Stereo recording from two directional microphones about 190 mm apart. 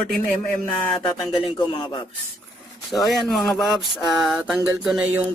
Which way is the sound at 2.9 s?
Centre (ahead or behind).